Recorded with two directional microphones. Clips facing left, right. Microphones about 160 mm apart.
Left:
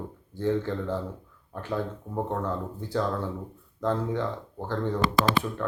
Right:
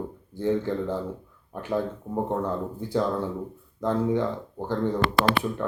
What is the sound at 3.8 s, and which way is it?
Speech, 15° right (ahead or behind).